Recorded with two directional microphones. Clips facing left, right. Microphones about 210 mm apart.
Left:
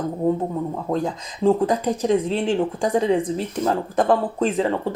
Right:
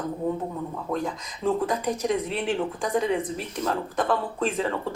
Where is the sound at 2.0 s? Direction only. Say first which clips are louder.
Left 6 dB; 30° left (ahead or behind).